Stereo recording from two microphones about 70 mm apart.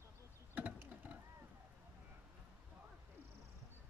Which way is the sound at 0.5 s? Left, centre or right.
Right.